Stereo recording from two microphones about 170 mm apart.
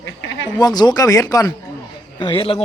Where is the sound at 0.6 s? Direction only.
25° left (ahead or behind).